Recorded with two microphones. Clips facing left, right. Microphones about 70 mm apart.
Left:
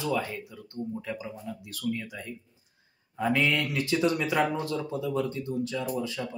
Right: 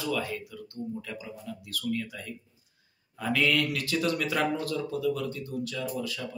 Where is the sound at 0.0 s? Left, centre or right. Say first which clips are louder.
Left 1 dB; left.